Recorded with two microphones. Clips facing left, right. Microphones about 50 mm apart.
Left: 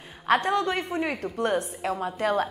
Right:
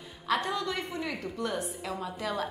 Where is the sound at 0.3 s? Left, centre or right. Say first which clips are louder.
Left 7 dB; left.